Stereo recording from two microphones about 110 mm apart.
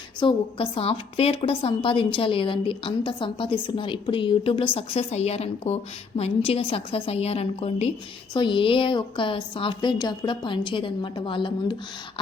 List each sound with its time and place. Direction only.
0.2 s a woman's voice: 50° left (ahead or behind)
4.9 s a woman's voice: 70° left (ahead or behind)
8.3 s a woman's voice: 50° left (ahead or behind)